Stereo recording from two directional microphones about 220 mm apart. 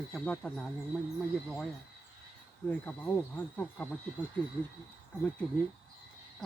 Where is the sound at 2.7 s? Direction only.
5° left (ahead or behind).